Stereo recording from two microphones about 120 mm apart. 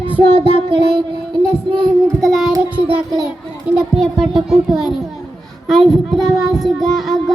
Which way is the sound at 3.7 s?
Centre (ahead or behind).